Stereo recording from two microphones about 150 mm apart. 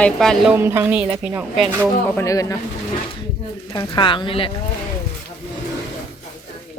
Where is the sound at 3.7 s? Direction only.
30° left (ahead or behind).